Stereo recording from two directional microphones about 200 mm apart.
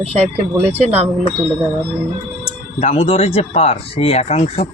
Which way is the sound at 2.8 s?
30° left (ahead or behind).